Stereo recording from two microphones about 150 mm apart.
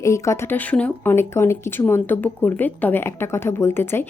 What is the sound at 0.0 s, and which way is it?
A woman's voice, 20° left (ahead or behind).